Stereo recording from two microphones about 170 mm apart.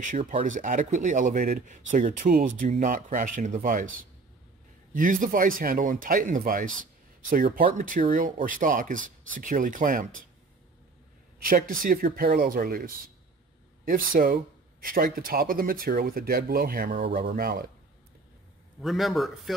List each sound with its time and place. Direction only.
0.0 s speech: 45° right (ahead or behind)
4.9 s speech: 50° right (ahead or behind)
11.4 s speech: 55° right (ahead or behind)
18.8 s a man's voice: centre (ahead or behind)